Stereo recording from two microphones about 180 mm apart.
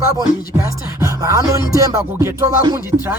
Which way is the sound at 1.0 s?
15° right (ahead or behind).